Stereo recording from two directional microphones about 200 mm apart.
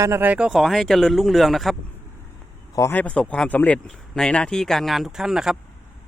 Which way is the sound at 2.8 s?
10° left (ahead or behind).